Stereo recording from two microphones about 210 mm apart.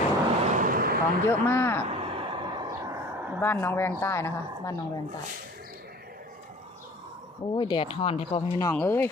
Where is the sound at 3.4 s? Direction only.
10° left (ahead or behind).